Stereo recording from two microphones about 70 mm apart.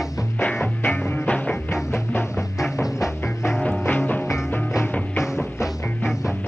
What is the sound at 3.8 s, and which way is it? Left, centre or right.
Music, left.